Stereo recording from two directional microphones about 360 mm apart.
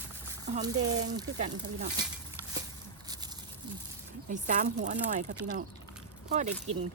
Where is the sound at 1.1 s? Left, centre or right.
Centre.